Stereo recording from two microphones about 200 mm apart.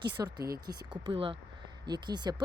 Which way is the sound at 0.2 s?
20° right (ahead or behind).